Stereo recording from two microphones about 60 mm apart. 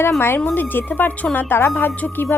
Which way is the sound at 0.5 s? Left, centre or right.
Left.